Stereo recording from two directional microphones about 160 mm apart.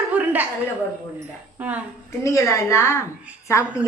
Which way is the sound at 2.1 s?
15° left (ahead or behind).